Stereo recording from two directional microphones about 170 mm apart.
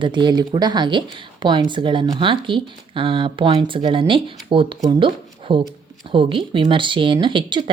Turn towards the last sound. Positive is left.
turn(degrees=-30)  # may be behind; listen again after turning